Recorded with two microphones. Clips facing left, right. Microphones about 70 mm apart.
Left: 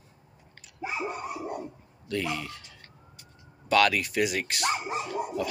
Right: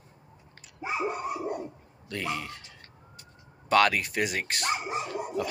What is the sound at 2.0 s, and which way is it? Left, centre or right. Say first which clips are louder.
Speech: left 2 dB; right.